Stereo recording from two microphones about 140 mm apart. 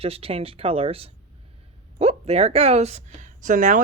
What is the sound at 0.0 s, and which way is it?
Speech, 45° right (ahead or behind).